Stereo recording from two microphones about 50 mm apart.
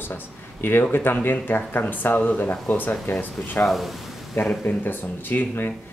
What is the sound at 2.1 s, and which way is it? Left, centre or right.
Speech, left.